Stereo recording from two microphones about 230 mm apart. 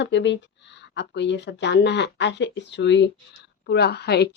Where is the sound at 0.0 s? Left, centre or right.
Left.